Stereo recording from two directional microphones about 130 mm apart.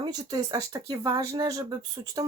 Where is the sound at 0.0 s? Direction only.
30° right (ahead or behind).